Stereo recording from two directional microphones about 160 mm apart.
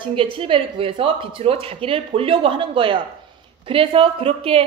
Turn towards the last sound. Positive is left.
turn(degrees=-35)  # may be behind; listen again after turning